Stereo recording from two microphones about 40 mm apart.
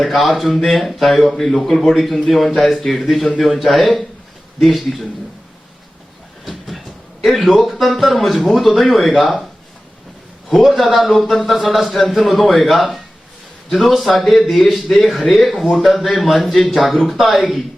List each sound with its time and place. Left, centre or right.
0.0 s a man's voice: centre
6.4 s a man's voice: centre
10.6 s a man's voice: centre